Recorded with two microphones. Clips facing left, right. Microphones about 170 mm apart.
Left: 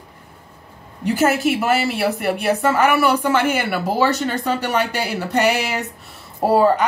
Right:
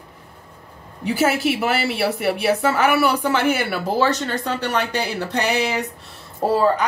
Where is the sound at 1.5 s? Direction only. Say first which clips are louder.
Left 2 dB; centre (ahead or behind).